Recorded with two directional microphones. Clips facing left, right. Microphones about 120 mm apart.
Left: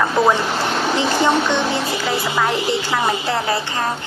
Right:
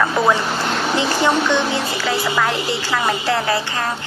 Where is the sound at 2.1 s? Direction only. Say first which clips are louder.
Right 1 dB; 15° left (ahead or behind).